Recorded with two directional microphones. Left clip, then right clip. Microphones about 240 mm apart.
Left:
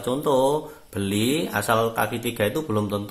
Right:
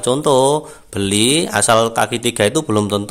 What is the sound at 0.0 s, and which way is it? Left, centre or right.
Speech, right.